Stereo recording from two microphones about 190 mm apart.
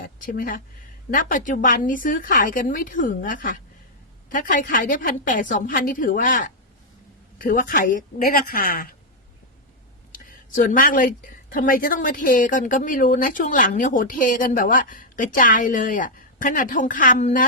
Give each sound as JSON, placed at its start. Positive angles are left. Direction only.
{"t": 0.0, "sound": "a sound", "side_deg": 45}
{"t": 1.1, "sound": "a woman's voice", "side_deg": 45}
{"t": 10.1, "sound": "a woman's voice", "side_deg": 45}